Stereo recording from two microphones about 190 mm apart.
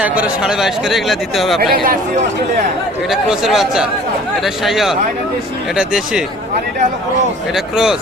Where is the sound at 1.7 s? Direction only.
50° right (ahead or behind).